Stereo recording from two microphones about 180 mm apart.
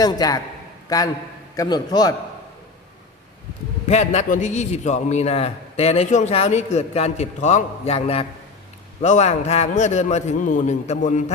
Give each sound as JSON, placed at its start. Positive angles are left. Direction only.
{"t": 0.0, "sound": "a man's voice", "side_deg": 20}
{"t": 3.8, "sound": "a man's voice", "side_deg": 40}